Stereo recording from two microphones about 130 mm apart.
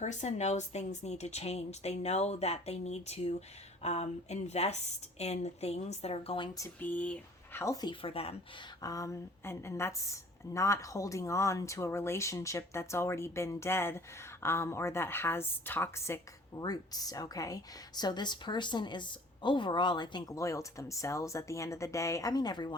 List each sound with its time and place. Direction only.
0.0 s speech: 65° left (ahead or behind); by 6.5 s 45° left (ahead or behind)
6.7 s speech: 10° left (ahead or behind)
7.6 s a woman's voice: 30° left (ahead or behind)
8.0 s speech: 45° left (ahead or behind)
8.8 s a woman's voice: 25° left (ahead or behind)